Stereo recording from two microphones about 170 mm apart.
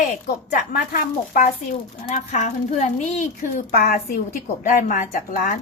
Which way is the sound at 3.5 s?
60° left (ahead or behind).